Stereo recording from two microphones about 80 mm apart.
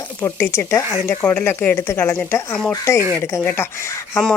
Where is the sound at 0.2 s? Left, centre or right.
Left.